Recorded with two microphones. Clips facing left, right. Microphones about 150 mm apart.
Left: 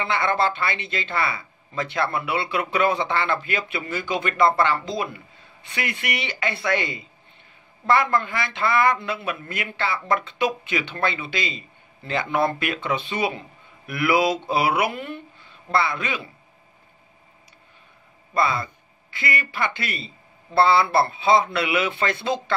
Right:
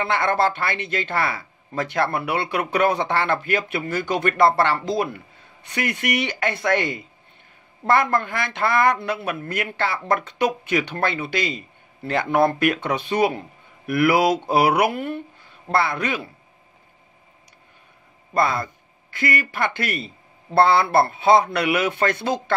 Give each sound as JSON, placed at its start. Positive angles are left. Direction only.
{"t": 0.0, "sound": "speech", "side_deg": -55}
{"t": 4.4, "sound": "a woman's voice", "side_deg": -65}
{"t": 5.8, "sound": "a woman's voice", "side_deg": -50}
{"t": 18.3, "sound": "speech", "side_deg": -50}